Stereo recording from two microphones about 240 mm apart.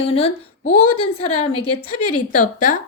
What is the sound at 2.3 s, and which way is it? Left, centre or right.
Speech, left.